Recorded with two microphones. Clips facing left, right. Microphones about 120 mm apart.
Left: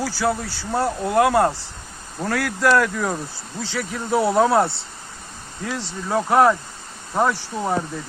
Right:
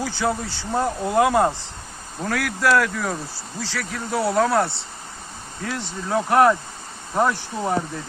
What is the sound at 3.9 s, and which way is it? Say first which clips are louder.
Speech: left 3 dB; 20° left (ahead or behind).